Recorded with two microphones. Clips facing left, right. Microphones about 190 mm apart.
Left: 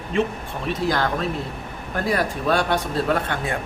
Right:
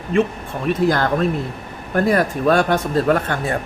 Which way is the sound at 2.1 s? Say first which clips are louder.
Right 4 dB; 45° right (ahead or behind).